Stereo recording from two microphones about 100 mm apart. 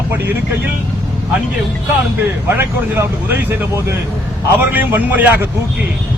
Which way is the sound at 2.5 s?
25° right (ahead or behind).